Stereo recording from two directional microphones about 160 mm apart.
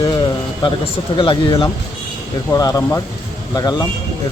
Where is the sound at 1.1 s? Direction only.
30° left (ahead or behind).